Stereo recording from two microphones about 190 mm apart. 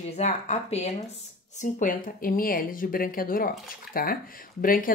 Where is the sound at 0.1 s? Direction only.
35° left (ahead or behind).